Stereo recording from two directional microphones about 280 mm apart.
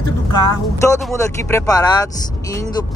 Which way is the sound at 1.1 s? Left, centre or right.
Centre.